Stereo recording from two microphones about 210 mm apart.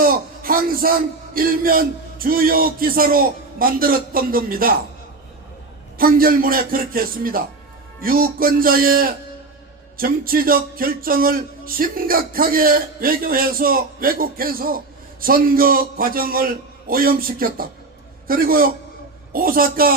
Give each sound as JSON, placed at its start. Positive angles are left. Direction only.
{"t": 0.0, "sound": "speech", "side_deg": -45}
{"t": 6.0, "sound": "speech", "side_deg": -45}